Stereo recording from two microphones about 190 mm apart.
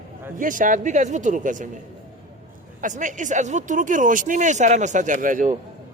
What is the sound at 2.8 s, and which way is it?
A man's voice, 40° right (ahead or behind).